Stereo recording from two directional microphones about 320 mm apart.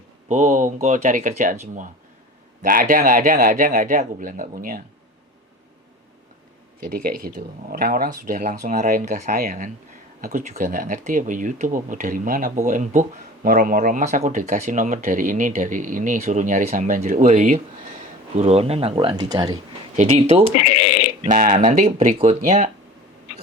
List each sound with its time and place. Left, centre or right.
0.3 s speech: right
7.0 s speech: right